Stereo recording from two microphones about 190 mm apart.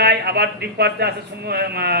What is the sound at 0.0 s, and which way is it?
A man's voice, 55° right (ahead or behind).